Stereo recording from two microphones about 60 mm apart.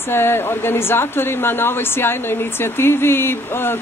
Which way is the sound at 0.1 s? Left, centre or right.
Left.